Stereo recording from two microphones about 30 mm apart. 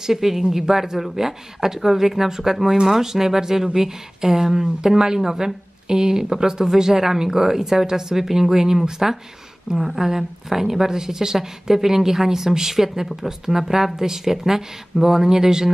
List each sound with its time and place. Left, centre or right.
0.0 s a woman's voice: centre
6.6 s a woman's voice: centre